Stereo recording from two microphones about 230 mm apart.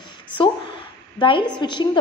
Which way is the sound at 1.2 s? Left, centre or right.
Left.